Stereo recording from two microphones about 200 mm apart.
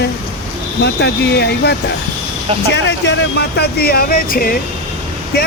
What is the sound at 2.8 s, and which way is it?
Speech, 60° left (ahead or behind).